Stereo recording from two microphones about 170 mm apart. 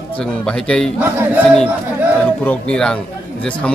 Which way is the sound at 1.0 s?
10° right (ahead or behind).